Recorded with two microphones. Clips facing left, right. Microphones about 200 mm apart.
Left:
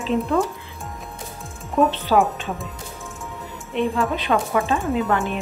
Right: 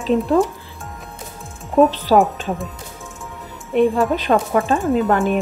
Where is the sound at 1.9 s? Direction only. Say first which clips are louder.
Right 4 dB; 40° right (ahead or behind).